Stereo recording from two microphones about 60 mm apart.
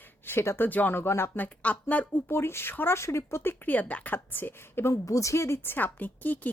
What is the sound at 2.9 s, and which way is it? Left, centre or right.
Speech, left.